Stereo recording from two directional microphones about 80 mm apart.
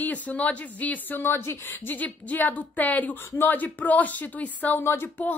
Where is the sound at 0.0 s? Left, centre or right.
Centre.